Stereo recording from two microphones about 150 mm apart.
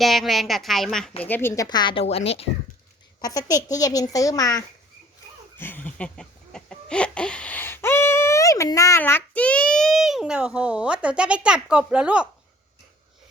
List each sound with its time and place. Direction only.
0.0 s a woman's voice: centre (ahead or behind)
1.2 s a woman's voice: 15° left (ahead or behind)
1.6 s a woman's voice: 30° left (ahead or behind)
3.2 s a woman's voice: 25° left (ahead or behind)
5.5 s chicken: 15° left (ahead or behind); by 12.3 s 5° right (ahead or behind)